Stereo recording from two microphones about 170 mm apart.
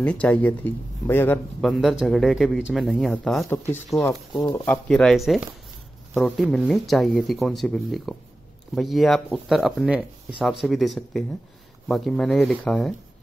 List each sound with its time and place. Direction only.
0.0 s speech: 5° left (ahead or behind)
1.6 s speech: centre (ahead or behind); by 4.6 s 20° left (ahead or behind)
4.6 s speech: 5° left (ahead or behind)